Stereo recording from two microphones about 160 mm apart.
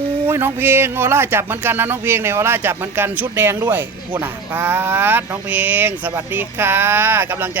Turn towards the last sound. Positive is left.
turn(degrees=-10)  # may be behind; listen again after turning